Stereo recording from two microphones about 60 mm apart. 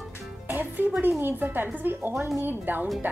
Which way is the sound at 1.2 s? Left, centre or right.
Right.